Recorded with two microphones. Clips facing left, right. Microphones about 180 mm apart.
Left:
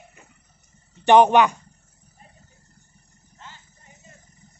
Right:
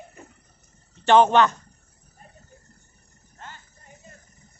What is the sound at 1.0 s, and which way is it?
Speech, 15° left (ahead or behind).